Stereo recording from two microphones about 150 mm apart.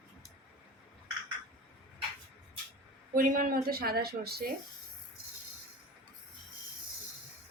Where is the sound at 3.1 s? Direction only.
65° right (ahead or behind); by 4.5 s 90° right.